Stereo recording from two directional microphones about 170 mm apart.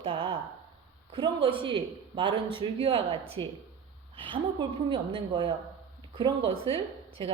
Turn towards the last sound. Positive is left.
turn(degrees=-35)  # may be behind; listen again after turning